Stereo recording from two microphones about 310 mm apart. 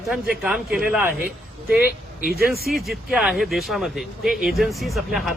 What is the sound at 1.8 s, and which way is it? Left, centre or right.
Speech, left.